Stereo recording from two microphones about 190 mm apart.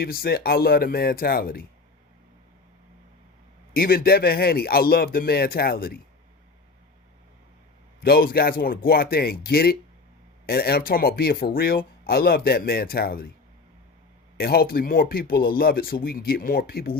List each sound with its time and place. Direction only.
0.0 s speech: 55° left (ahead or behind)
3.8 s speech: 50° left (ahead or behind)
8.0 s speech: 50° left (ahead or behind)
14.3 s speech: 55° left (ahead or behind)